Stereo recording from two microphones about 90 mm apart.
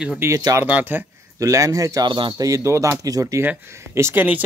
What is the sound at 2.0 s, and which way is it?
Speech, 65° right (ahead or behind).